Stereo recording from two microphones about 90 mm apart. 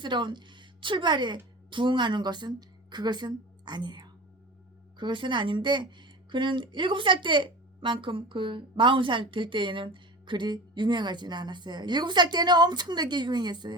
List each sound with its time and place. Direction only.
0.0 s a woman's voice: 60° right (ahead or behind)